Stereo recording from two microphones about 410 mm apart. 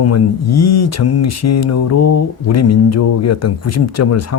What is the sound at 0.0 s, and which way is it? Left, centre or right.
Speech, left.